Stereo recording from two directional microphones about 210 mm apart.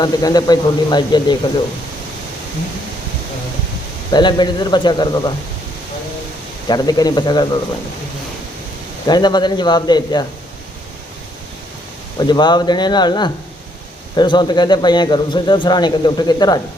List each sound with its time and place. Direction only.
0.0 s a man's voice: 20° left (ahead or behind)
4.1 s a man's voice: 20° left (ahead or behind)
6.7 s a man's voice: 20° left (ahead or behind)
9.0 s a man's voice: 20° left (ahead or behind)
12.2 s a man's voice: 20° left (ahead or behind)